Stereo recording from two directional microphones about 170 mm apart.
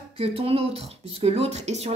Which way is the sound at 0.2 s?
35° right (ahead or behind).